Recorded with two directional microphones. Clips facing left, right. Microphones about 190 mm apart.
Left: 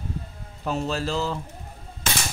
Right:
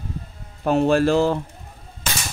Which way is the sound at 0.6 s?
60° right (ahead or behind).